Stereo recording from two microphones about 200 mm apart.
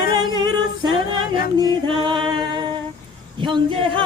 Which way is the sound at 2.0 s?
25° right (ahead or behind).